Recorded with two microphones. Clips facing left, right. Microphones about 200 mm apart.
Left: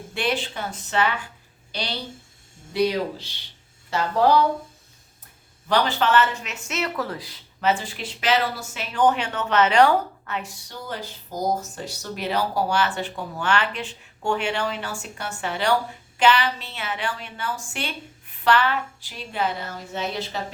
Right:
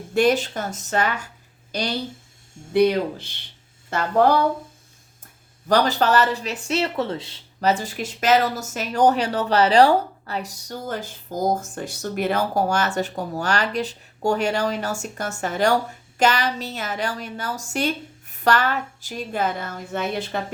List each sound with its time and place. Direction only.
0.1 s speech: 45° right (ahead or behind)
5.6 s speech: 40° right (ahead or behind); by 7.4 s 25° right (ahead or behind)
7.6 s speech: 40° right (ahead or behind)